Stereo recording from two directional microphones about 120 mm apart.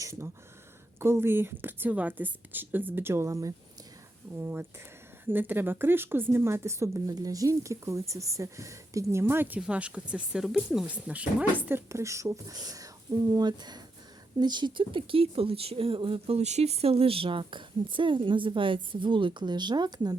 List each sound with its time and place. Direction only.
0.0 s speech: 25° right (ahead or behind)
4.4 s a woman's voice: 15° right (ahead or behind)
11.6 s a woman's voice: 20° right (ahead or behind)